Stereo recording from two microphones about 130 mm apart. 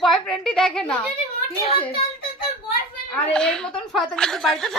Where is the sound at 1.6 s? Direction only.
45° left (ahead or behind).